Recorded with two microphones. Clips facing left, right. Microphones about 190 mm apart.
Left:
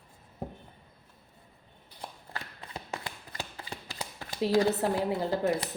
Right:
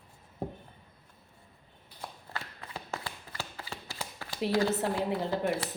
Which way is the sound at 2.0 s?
15° left (ahead or behind).